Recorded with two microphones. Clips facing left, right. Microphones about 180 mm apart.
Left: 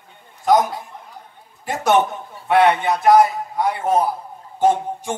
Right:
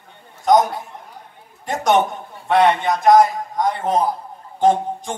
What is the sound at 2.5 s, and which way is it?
A man's voice, 5° left (ahead or behind).